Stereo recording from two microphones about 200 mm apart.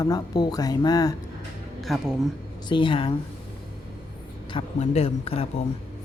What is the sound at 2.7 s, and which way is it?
Speech, 25° left (ahead or behind).